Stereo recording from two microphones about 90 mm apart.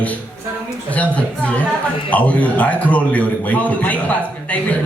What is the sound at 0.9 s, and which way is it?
A man's voice, 15° left (ahead or behind).